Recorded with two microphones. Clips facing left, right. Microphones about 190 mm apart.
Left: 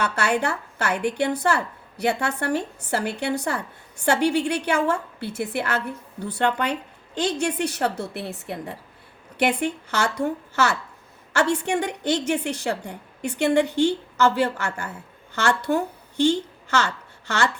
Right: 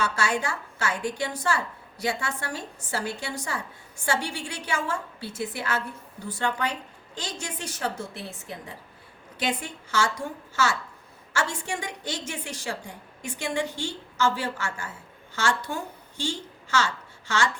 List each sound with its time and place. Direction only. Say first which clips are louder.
0.0 s a woman's voice: left 4 dB; 65° left (ahead or behind)